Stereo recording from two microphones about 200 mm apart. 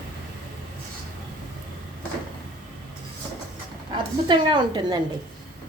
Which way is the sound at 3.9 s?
25° right (ahead or behind).